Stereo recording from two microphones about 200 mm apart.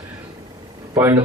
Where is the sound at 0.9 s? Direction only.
10° right (ahead or behind).